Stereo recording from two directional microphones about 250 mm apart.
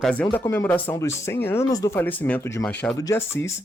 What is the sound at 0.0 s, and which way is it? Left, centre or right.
Speech, centre.